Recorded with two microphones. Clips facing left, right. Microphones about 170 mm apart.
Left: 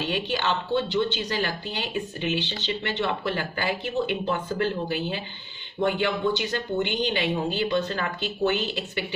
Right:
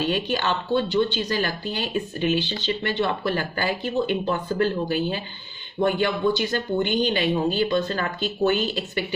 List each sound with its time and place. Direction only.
0.0 s a woman's voice: 45° right (ahead or behind)